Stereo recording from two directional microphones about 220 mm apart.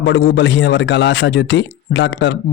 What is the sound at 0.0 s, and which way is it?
A man's voice, 55° left (ahead or behind).